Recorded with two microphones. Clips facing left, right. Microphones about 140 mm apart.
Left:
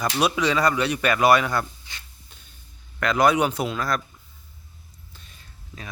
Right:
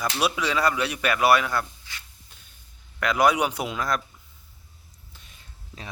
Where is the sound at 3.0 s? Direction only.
10° right (ahead or behind).